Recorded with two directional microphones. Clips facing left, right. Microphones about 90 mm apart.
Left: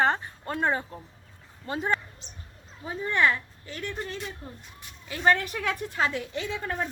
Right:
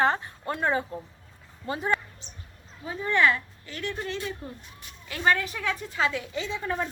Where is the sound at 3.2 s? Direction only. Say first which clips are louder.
Even; 20° left (ahead or behind).